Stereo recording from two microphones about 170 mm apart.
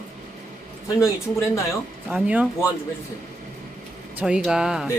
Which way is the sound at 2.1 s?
10° right (ahead or behind).